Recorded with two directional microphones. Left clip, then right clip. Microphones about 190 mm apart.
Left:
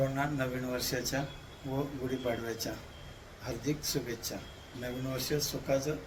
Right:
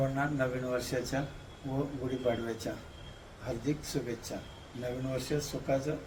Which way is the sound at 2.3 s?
10° right (ahead or behind).